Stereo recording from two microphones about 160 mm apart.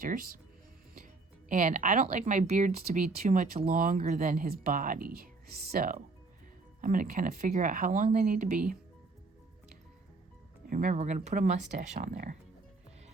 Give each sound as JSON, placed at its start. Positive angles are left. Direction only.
{"t": 0.0, "sound": "speech", "side_deg": -60}
{"t": 1.5, "sound": "speech", "side_deg": -55}
{"t": 10.7, "sound": "speech", "side_deg": -60}